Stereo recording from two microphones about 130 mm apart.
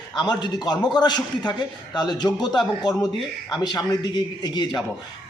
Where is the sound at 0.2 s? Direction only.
35° left (ahead or behind).